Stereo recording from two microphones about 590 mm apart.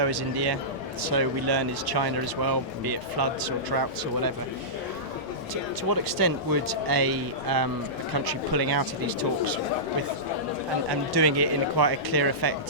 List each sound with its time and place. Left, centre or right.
0.0 s speech: right
5.9 s speech: right
11.1 s speech: right